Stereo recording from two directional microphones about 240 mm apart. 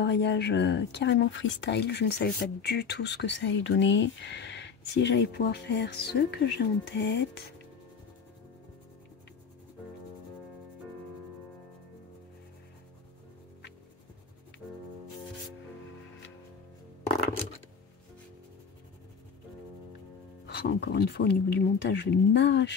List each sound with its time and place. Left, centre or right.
0.0 s speech: left
20.4 s speech: left